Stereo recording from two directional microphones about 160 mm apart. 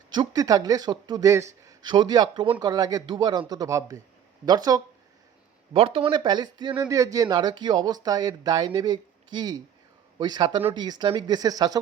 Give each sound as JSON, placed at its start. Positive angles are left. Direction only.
{"t": 0.1, "sound": "a man's voice", "side_deg": -25}
{"t": 5.7, "sound": "a man's voice", "side_deg": -35}